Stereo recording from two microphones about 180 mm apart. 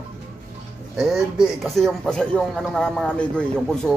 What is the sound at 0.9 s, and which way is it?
Speech, centre (ahead or behind).